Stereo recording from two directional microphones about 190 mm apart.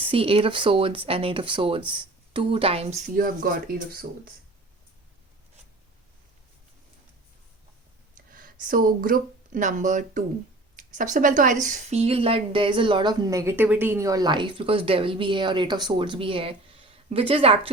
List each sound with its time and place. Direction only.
0.0 s a woman's voice: 30° right (ahead or behind); by 4.0 s 50° right (ahead or behind)
8.3 s a woman's voice: 50° right (ahead or behind); by 17.5 s 30° right (ahead or behind)